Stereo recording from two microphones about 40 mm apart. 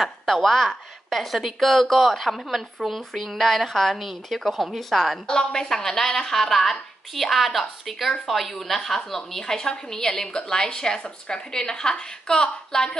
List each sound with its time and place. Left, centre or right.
0.0 s a woman's voice: centre
5.2 s a woman's voice: centre